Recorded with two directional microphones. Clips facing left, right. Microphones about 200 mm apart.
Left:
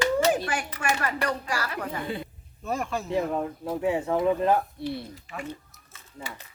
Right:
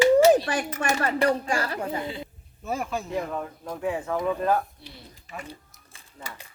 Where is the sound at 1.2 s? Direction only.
25° right (ahead or behind).